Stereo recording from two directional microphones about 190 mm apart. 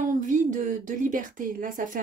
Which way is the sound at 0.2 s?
45° right (ahead or behind).